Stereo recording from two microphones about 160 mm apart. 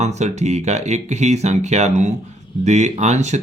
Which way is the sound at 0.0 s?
45° right (ahead or behind).